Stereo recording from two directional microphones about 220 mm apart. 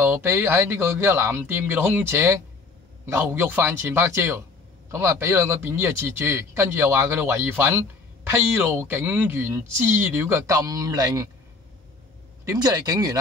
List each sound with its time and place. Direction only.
0.0 s speech: 10° right (ahead or behind)
12.4 s speech: 15° right (ahead or behind)